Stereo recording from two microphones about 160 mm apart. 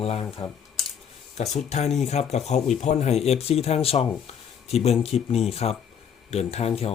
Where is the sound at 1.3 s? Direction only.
45° left (ahead or behind).